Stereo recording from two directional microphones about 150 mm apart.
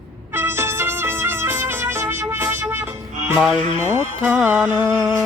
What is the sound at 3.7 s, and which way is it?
Speech, 55° right (ahead or behind).